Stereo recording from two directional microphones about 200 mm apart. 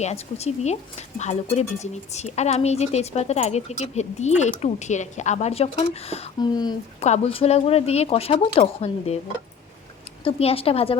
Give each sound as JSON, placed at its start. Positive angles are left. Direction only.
{"t": 0.0, "sound": "speech", "side_deg": 35}
{"t": 10.2, "sound": "speech", "side_deg": 30}